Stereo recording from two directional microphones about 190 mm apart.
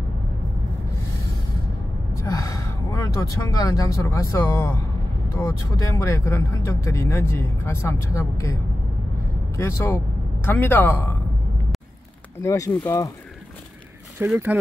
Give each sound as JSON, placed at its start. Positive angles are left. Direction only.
{"t": 2.2, "sound": "a man's voice", "side_deg": 20}
{"t": 12.4, "sound": "speech", "side_deg": 15}
{"t": 14.2, "sound": "speech", "side_deg": -10}